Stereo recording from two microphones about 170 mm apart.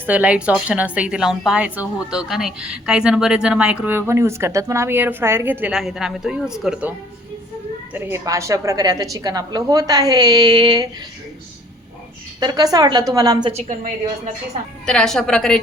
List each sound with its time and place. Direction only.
0.0 s a woman's voice: 10° right (ahead or behind)
7.9 s a woman's voice: 15° right (ahead or behind)
12.4 s a woman's voice: 25° right (ahead or behind)
13.5 s a woman's voice: 45° right (ahead or behind)
14.8 s a woman's voice: 5° left (ahead or behind)